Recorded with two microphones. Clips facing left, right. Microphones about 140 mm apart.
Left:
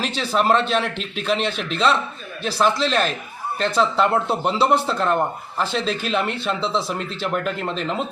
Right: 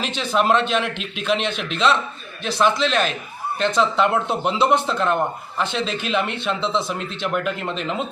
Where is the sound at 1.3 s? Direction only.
35° left (ahead or behind).